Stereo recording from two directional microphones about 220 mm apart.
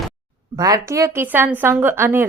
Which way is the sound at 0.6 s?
15° right (ahead or behind).